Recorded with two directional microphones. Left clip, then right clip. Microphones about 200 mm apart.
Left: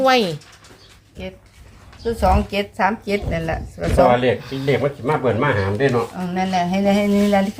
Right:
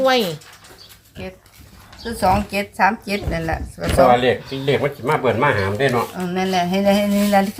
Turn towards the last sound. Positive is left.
turn(degrees=0)  # may be behind; listen again after turning